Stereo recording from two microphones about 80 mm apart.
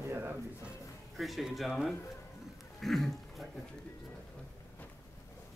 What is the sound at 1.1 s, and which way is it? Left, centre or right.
Speech, centre.